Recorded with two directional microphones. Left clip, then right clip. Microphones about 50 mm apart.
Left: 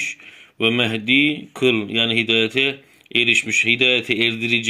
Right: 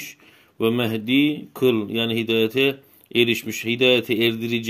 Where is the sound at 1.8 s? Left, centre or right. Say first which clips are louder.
Left 4 dB; right.